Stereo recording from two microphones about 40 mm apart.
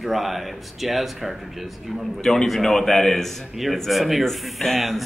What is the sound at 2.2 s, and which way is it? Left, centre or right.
Speech, centre.